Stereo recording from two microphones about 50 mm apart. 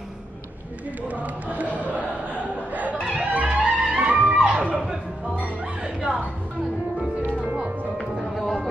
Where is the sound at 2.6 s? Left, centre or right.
Right.